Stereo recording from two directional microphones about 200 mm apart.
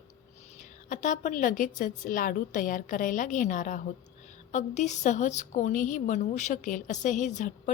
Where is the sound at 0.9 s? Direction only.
40° left (ahead or behind).